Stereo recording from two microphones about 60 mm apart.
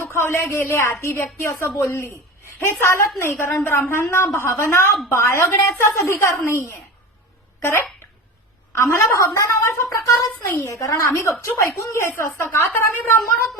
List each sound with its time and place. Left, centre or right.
0.1 s speech: left
10.5 s speech: left
10.8 s a woman's voice: left